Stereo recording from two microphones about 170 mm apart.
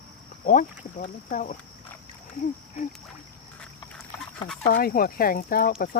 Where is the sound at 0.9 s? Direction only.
50° left (ahead or behind).